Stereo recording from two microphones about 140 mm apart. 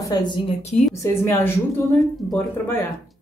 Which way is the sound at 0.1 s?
30° left (ahead or behind).